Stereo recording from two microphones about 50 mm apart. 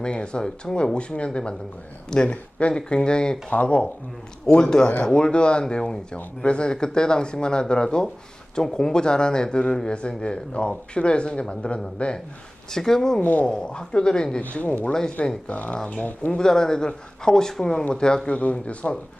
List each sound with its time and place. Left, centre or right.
0.0 s speech: centre
3.5 s speech: left
4.4 s speech: centre
12.7 s speech: centre
14.4 s speech: left
16.4 s speech: centre
18.3 s speech: left